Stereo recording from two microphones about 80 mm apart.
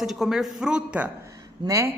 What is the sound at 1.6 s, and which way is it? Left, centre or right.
Speech, right.